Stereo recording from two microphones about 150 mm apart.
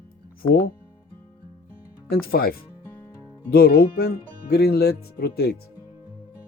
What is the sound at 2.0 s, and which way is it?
Speech, 90° left.